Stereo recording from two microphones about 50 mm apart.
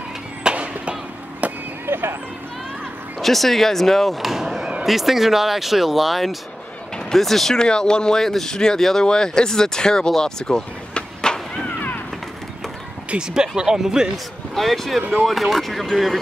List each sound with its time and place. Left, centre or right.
0.4 s a sound: right
1.9 s a sound: right
3.2 s speech: centre
13.1 s speech: right
13.6 s speech: centre
14.5 s speech: centre